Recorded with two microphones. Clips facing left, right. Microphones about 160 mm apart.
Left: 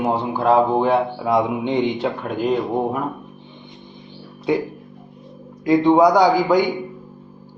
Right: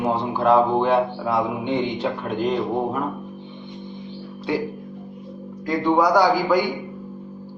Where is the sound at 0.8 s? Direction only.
10° left (ahead or behind).